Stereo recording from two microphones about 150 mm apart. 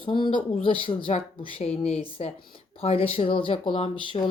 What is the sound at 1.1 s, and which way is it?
Speech, 40° left (ahead or behind).